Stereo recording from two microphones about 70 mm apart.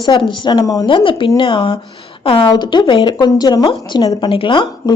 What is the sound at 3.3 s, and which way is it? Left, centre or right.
Speech, left.